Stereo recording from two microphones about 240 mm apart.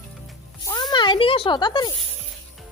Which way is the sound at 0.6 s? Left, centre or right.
Centre.